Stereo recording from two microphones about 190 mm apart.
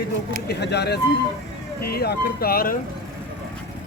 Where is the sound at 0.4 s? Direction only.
60° left (ahead or behind).